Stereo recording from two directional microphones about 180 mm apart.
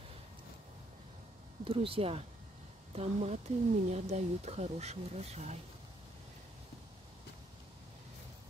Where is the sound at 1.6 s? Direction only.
30° right (ahead or behind).